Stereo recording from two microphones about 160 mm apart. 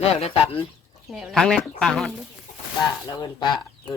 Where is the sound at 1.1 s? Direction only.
Centre (ahead or behind).